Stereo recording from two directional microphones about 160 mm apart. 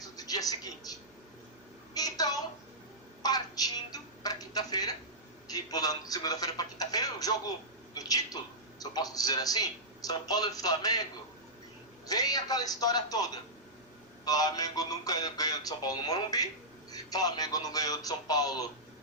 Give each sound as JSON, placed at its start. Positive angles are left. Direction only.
{"t": 0.0, "sound": "television", "side_deg": 25}
{"t": 1.9, "sound": "a sound", "side_deg": 25}
{"t": 3.2, "sound": "a man's voice", "side_deg": 25}
{"t": 12.0, "sound": "a man's voice", "side_deg": 25}